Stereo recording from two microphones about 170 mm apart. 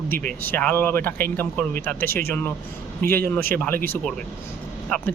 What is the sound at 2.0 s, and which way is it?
Speech, 60° right (ahead or behind).